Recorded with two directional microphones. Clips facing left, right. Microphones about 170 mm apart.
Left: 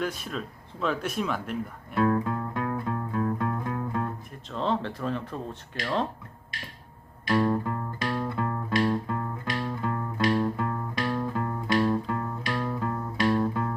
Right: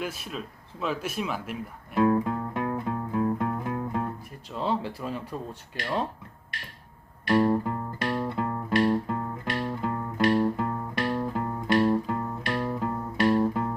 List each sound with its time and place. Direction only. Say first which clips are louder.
0.0 s speech: left 2 dB; 5° right (ahead or behind)
2.0 s music: right 2 dB; 25° right (ahead or behind)
4.5 s speech: left 1 dB; 10° right (ahead or behind)
7.3 s music: right 2 dB; 30° right (ahead or behind)